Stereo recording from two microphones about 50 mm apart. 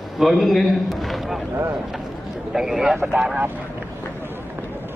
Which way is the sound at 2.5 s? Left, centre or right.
Centre.